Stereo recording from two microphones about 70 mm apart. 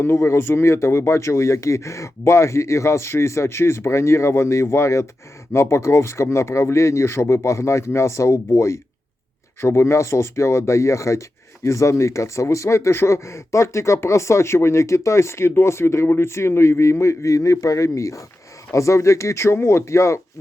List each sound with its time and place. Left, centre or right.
0.0 s speech: left